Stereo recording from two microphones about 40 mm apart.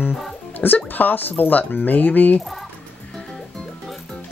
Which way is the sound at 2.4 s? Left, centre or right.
Centre.